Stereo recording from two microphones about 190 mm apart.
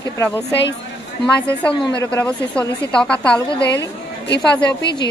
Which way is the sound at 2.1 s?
5° left (ahead or behind).